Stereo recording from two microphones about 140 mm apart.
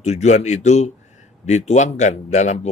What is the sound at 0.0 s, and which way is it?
A man's voice, 55° left (ahead or behind).